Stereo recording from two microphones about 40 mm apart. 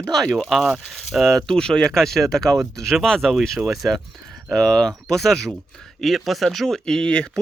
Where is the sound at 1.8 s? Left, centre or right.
Centre.